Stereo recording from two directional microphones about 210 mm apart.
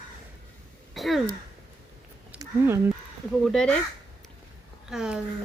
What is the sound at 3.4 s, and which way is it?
Speech, centre (ahead or behind).